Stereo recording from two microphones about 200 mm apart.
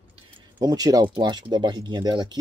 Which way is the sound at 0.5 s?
20° right (ahead or behind).